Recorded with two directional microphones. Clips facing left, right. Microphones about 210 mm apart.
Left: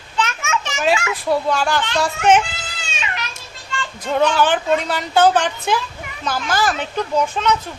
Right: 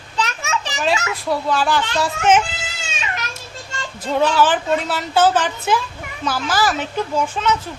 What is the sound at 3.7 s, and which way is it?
Children playing, 40° right (ahead or behind).